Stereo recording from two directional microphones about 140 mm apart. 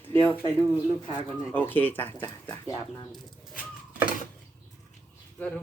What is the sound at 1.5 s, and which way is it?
Speech, 15° left (ahead or behind).